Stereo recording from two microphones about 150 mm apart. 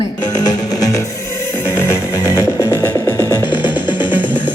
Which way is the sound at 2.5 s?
20° left (ahead or behind).